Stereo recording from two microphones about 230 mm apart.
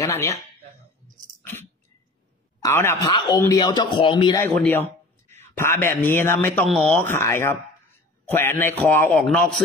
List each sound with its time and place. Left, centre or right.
0.0 s speech: centre
2.6 s a man's voice: centre